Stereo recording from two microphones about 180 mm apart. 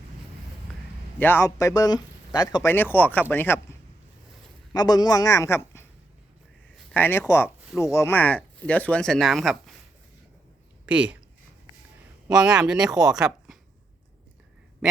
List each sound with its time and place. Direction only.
1.2 s speech: 15° left (ahead or behind)
2.7 s speech: 10° left (ahead or behind)
4.7 s speech: 20° left (ahead or behind); by 9.7 s centre (ahead or behind)
10.8 s speech: 5° right (ahead or behind)
12.3 s speech: 5° right (ahead or behind)